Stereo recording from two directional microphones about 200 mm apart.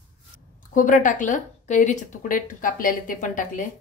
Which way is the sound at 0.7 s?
40° left (ahead or behind).